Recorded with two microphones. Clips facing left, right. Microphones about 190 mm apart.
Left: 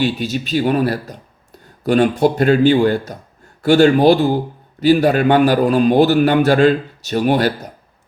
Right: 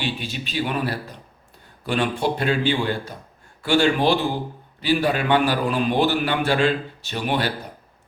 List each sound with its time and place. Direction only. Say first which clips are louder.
0.0 s a man's voice: left 9 dB; 40° left (ahead or behind)